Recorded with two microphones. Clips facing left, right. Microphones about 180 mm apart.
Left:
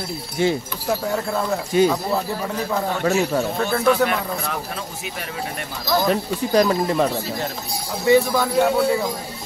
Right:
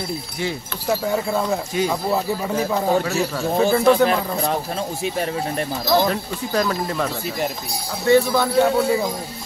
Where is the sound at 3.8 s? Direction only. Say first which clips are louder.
Right 3 dB; 30° right (ahead or behind).